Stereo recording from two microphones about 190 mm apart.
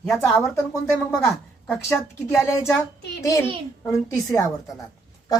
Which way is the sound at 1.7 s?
10° left (ahead or behind).